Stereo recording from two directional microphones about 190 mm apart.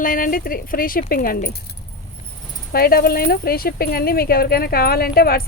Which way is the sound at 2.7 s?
55° left (ahead or behind).